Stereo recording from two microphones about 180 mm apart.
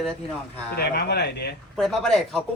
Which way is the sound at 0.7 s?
65° left (ahead or behind).